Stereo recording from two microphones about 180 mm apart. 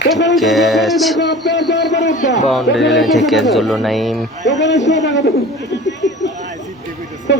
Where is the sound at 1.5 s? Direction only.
70° left (ahead or behind).